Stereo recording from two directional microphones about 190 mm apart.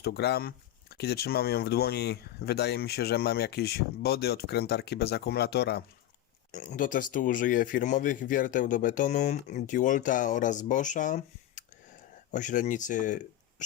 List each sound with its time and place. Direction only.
0.0 s speech: 60° left (ahead or behind)
6.5 s speech: 40° left (ahead or behind)